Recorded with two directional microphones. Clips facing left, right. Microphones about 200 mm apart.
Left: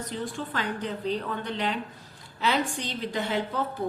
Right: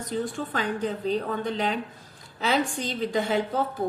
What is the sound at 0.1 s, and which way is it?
A woman's voice, 45° right (ahead or behind).